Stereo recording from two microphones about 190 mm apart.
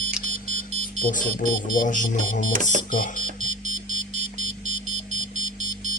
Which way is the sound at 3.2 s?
35° right (ahead or behind).